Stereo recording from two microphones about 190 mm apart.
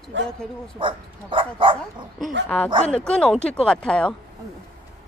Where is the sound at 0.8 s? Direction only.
25° right (ahead or behind).